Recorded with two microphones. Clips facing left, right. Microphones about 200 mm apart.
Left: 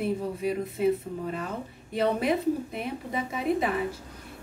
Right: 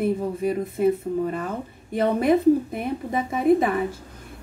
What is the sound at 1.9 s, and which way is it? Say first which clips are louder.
A woman's voice: right 6 dB; 45° right (ahead or behind).